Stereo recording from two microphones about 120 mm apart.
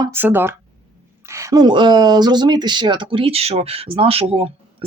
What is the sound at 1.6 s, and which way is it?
Speech, 40° right (ahead or behind).